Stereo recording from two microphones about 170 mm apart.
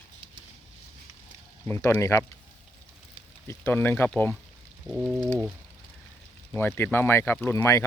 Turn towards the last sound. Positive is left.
turn(degrees=15)  # may be behind; listen again after turning